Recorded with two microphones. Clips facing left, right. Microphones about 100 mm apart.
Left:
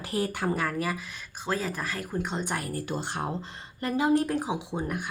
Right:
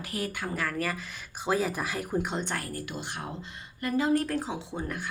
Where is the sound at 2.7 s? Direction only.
30° left (ahead or behind).